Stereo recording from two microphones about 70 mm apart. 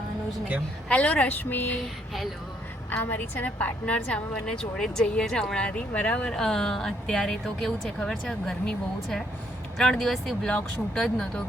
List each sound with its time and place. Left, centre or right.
0.9 s speech: centre
2.9 s a woman's voice: left